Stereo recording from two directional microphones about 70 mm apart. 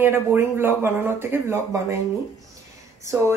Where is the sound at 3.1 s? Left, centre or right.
Right.